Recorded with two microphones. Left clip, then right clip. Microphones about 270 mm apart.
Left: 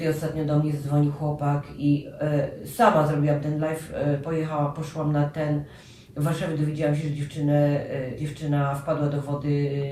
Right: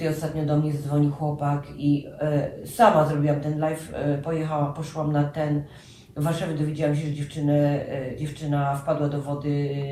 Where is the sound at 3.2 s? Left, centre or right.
Centre.